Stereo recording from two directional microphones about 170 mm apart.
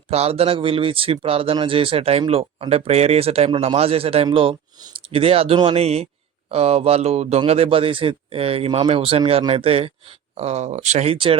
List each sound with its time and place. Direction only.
0.1 s speech: 35° right (ahead or behind)